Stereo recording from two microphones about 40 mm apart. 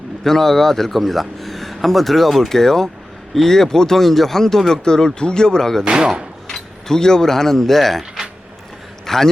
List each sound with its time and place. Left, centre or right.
0.3 s speech: centre
5.8 s speech: centre
6.5 s mechanisms: centre
9.0 s a man's voice: centre